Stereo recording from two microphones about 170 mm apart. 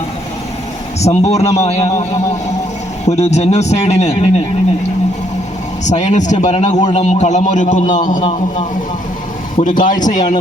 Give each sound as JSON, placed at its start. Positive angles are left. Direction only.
{"t": 0.9, "sound": "speech", "side_deg": 40}
{"t": 3.1, "sound": "speech", "side_deg": 40}
{"t": 6.1, "sound": "a man's voice", "side_deg": 45}